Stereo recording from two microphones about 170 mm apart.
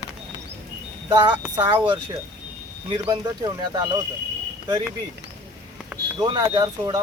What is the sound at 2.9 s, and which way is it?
Speech, 25° right (ahead or behind).